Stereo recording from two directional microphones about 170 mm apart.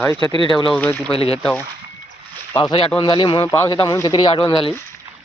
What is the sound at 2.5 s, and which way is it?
Speech, 30° left (ahead or behind).